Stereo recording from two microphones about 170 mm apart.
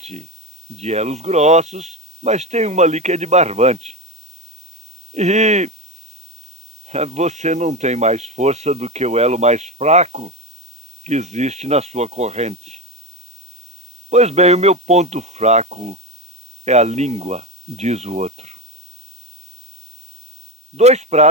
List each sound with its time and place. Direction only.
0.0 s speech: 40° right (ahead or behind)
5.1 s speech: 40° right (ahead or behind)
6.8 s speech: 40° right (ahead or behind)
14.1 s speech: 40° right (ahead or behind)
20.7 s speech: 40° right (ahead or behind)